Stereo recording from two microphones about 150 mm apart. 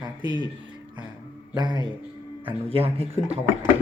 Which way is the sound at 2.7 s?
40° right (ahead or behind).